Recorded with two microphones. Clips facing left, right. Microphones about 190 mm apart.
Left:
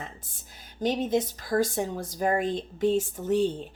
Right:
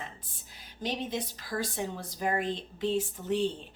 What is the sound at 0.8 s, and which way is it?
A woman's voice, 45° left (ahead or behind).